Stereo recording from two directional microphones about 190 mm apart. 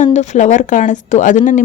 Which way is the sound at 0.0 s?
40° left (ahead or behind).